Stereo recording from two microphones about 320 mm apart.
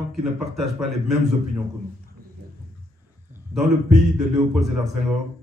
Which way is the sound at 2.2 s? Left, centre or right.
Right.